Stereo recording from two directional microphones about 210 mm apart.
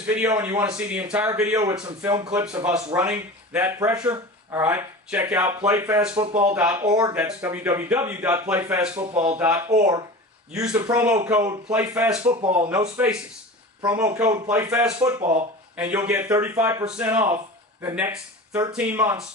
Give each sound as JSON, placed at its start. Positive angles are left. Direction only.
{"t": 0.0, "sound": "speech", "side_deg": -5}
{"t": 6.2, "sound": "speech", "side_deg": -30}
{"t": 6.5, "sound": "speech", "side_deg": -5}
{"t": 7.2, "sound": "speech", "side_deg": -5}
{"t": 9.1, "sound": "speech", "side_deg": -30}
{"t": 9.4, "sound": "speech", "side_deg": -10}
{"t": 10.9, "sound": "speech", "side_deg": -5}
{"t": 12.2, "sound": "speech", "side_deg": -30}
{"t": 12.9, "sound": "speech", "side_deg": -5}